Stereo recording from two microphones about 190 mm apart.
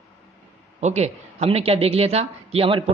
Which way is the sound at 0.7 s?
35° right (ahead or behind).